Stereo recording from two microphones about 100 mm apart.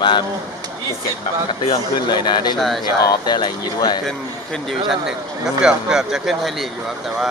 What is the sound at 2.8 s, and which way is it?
Speech, 45° left (ahead or behind).